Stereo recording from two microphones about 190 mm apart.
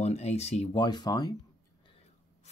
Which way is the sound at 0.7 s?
20° left (ahead or behind).